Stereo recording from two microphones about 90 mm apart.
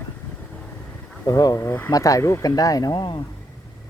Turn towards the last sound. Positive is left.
turn(degrees=55)  # may be behind; listen again after turning